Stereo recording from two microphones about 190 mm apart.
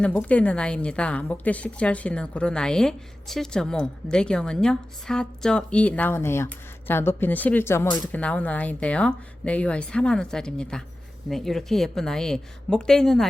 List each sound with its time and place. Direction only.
0.0 s a woman's voice: 5° left (ahead or behind)